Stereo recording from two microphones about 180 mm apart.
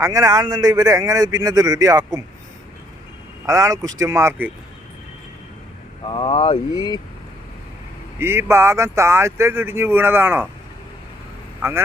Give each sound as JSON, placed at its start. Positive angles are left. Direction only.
{"t": 0.0, "sound": "speech", "side_deg": -20}
{"t": 3.4, "sound": "speech", "side_deg": -20}
{"t": 6.1, "sound": "speech", "side_deg": 30}
{"t": 8.2, "sound": "speech", "side_deg": -15}
{"t": 11.6, "sound": "speech", "side_deg": -15}